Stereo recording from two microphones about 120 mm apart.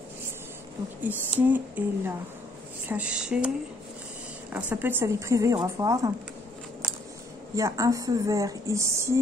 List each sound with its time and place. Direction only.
1.0 s speech: 15° right (ahead or behind)
7.5 s speech: 30° right (ahead or behind)